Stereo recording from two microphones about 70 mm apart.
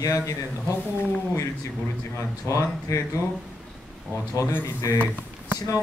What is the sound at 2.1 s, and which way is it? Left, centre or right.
Speech, left.